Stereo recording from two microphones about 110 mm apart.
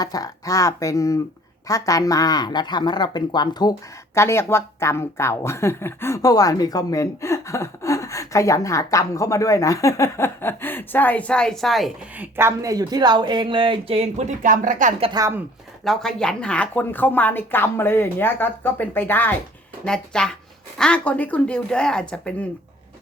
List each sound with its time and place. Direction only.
0.0 s speech: 35° left (ahead or behind)
4.1 s a woman's voice: 25° left (ahead or behind); by 11.9 s centre (ahead or behind)
12.2 s speech: 25° right (ahead or behind); by 14.3 s 80° right
15.2 s speech: 35° right (ahead or behind)
15.8 s speech: 5° left (ahead or behind)
19.8 s speech: 5° left (ahead or behind)